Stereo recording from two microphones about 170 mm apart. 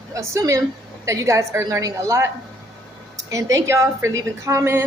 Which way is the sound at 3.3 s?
20° right (ahead or behind).